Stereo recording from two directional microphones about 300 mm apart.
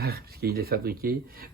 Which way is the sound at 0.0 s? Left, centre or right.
Right.